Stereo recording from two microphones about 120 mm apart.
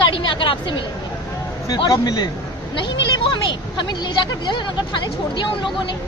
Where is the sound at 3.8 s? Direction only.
40° left (ahead or behind).